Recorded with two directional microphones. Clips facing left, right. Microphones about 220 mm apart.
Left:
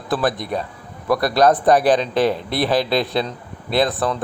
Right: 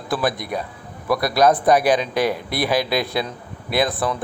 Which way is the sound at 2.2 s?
25° left (ahead or behind).